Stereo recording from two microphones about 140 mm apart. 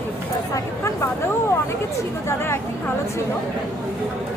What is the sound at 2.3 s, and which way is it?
Speech, 20° left (ahead or behind).